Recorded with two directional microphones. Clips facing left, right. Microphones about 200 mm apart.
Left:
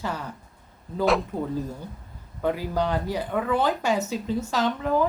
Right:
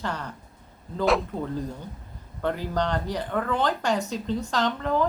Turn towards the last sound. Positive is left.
turn(degrees=10)  # may be behind; listen again after turning